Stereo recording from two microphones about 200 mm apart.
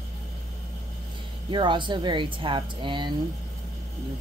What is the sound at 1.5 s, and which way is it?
Speech, 25° right (ahead or behind).